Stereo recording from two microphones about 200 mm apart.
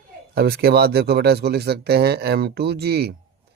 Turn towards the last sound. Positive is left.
turn(degrees=-50)  # may be behind; listen again after turning